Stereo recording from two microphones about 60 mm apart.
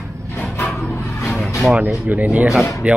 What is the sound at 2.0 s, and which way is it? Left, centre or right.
Speech, right.